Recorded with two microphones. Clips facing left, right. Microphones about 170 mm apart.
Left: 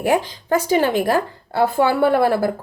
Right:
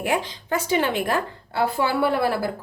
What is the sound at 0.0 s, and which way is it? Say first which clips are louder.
A woman's voice: left 6 dB; 40° left (ahead or behind).